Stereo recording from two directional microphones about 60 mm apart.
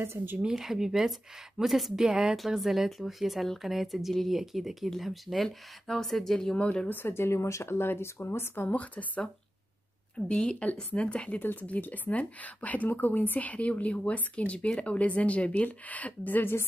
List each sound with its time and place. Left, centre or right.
0.0 s speech: right
0.4 s speech: centre
2.3 s speech: centre
6.9 s speech: left
7.2 s speech: left
8.5 s a woman's voice: left